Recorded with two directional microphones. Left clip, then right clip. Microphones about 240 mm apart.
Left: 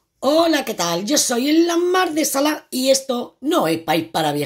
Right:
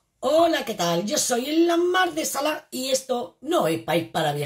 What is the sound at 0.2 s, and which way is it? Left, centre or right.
Speech, left.